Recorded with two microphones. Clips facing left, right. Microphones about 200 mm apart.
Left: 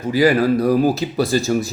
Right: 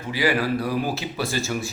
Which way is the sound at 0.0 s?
40° left (ahead or behind).